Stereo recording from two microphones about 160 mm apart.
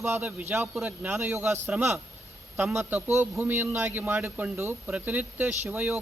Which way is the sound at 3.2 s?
15° right (ahead or behind).